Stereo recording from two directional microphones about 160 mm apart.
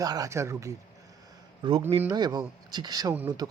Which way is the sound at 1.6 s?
30° right (ahead or behind).